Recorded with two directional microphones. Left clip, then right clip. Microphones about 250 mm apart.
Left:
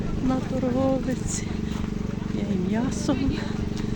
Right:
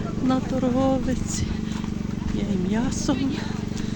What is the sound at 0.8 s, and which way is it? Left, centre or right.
Speech, centre.